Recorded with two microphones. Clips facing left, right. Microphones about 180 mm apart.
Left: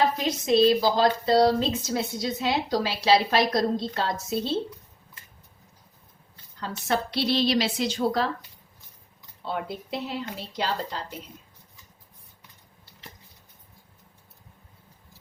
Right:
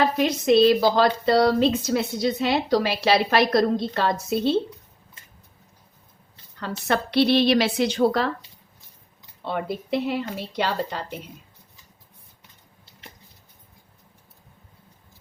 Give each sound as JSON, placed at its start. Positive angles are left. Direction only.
{"t": 0.2, "sound": "a woman's voice", "side_deg": -65}
{"t": 6.6, "sound": "a woman's voice", "side_deg": -65}
{"t": 9.4, "sound": "a woman's voice", "side_deg": -65}